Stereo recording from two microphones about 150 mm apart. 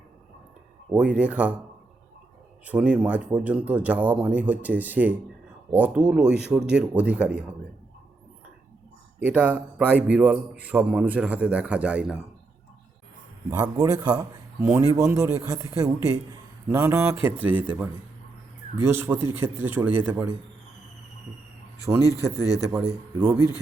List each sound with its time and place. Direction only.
0.9 s a man's voice: 10° right (ahead or behind)
2.6 s a man's voice: 5° right (ahead or behind)
9.2 s a man's voice: 10° right (ahead or behind)
13.5 s a man's voice: 25° right (ahead or behind); by 17.8 s 10° right (ahead or behind)
18.9 s a man's voice: 15° right (ahead or behind)
22.0 s speech: 20° left (ahead or behind)
22.7 s a man's voice: 20° right (ahead or behind)